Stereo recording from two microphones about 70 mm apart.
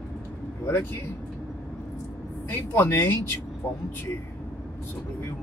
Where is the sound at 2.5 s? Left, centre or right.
Left.